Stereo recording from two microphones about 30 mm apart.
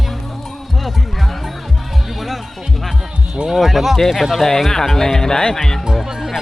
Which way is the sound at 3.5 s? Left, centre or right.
Centre.